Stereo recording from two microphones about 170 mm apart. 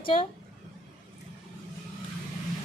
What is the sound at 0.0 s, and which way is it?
Speech, 30° left (ahead or behind).